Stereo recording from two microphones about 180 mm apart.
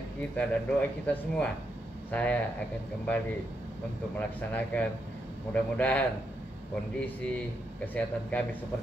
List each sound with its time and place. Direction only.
0.4 s speech: 5° left (ahead or behind)
4.2 s speech: 10° left (ahead or behind)